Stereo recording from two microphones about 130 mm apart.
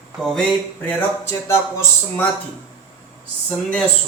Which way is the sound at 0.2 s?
Centre (ahead or behind).